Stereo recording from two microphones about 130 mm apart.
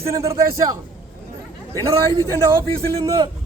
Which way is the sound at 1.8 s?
25° right (ahead or behind).